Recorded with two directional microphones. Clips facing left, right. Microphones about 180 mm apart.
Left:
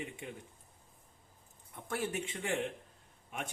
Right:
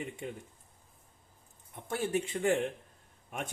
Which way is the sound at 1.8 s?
20° right (ahead or behind).